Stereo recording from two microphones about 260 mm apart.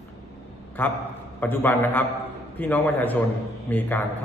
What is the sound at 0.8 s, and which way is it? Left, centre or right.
A man's voice, centre.